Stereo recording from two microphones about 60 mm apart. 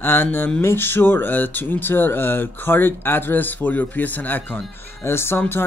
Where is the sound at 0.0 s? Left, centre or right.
Left.